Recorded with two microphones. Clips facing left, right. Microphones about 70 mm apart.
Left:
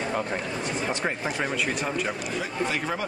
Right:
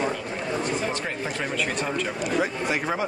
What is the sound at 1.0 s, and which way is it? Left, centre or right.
Speech, centre.